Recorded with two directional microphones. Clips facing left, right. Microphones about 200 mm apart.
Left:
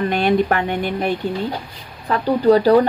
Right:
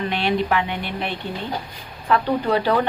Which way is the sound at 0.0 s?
50° left (ahead or behind).